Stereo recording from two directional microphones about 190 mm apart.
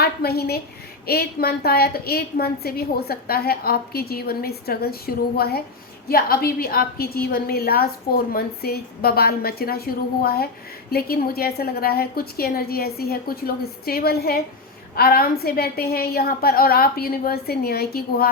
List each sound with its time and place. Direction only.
0.0 s a woman's voice: 55° left (ahead or behind)